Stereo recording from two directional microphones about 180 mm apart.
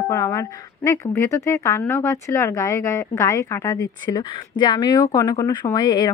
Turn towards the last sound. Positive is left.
turn(degrees=20)  # may be behind; listen again after turning